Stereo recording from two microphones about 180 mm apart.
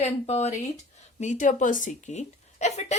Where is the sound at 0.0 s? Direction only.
40° left (ahead or behind).